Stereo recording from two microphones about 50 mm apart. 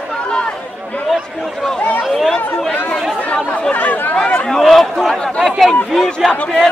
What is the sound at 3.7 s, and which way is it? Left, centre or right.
Chatter, left.